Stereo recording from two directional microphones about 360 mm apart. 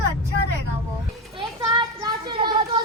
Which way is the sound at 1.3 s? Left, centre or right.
Centre.